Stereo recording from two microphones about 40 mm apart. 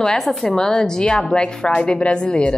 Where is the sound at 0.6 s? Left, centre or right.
Centre.